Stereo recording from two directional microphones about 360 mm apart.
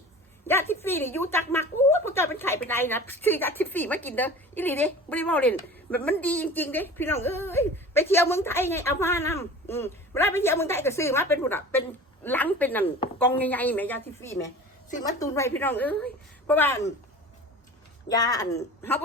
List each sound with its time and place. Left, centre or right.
0.4 s a woman's voice: centre
18.1 s a woman's voice: centre